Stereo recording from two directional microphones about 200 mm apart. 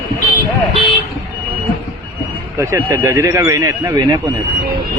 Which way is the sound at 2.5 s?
15° right (ahead or behind).